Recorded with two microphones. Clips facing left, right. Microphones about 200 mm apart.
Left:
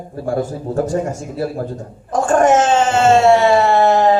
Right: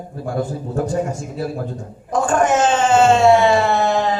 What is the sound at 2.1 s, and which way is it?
A woman's voice, 45° left (ahead or behind).